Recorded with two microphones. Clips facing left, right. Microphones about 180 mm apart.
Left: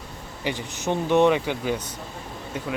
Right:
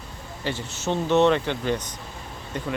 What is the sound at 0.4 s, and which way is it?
Speech, 15° left (ahead or behind).